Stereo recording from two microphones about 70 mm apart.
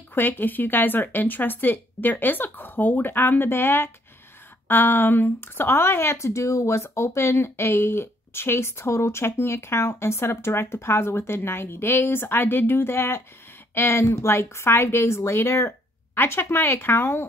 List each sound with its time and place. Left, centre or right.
0.1 s speech: left